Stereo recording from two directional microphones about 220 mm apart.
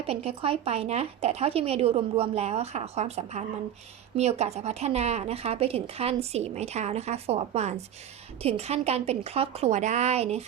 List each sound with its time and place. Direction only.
0.1 s speech: 25° right (ahead or behind)